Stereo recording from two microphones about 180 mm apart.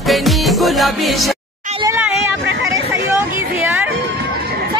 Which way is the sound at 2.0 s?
10° right (ahead or behind).